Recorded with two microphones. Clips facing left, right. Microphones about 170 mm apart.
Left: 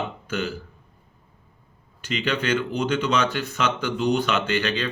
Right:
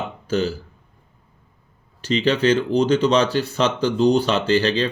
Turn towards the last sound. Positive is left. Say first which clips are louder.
# right 6 dB
turn(degrees=-35)  # may be behind; listen again after turning